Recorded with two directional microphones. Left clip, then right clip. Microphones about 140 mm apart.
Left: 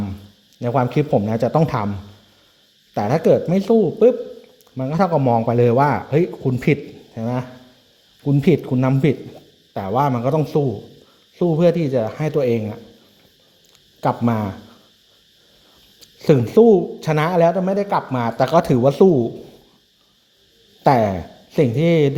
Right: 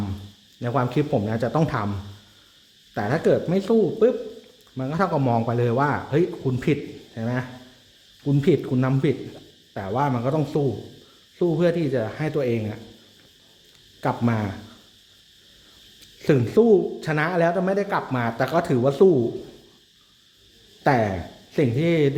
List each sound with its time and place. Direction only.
0.6 s speech: 30° left (ahead or behind)
2.9 s speech: 40° left (ahead or behind)
5.2 s speech: 20° left (ahead or behind)
5.5 s speech: 40° left (ahead or behind)
9.7 s speech: 45° left (ahead or behind)
14.0 s speech: 35° left (ahead or behind)
16.0 s speech: 35° left (ahead or behind)
17.5 s speech: 25° left (ahead or behind)
20.8 s speech: 40° left (ahead or behind)